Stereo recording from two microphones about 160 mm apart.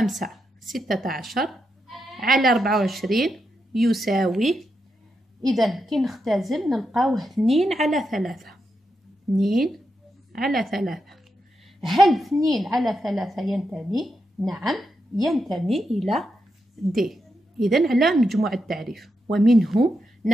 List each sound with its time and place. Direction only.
0.0 s a woman's voice: centre (ahead or behind)